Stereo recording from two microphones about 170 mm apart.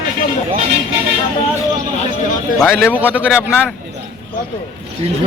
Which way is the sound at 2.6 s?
5° right (ahead or behind).